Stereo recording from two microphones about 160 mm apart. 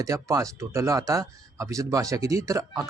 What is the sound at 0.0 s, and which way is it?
A man's voice, 20° right (ahead or behind).